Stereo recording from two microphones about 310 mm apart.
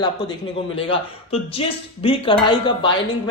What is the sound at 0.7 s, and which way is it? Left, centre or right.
Speech, centre.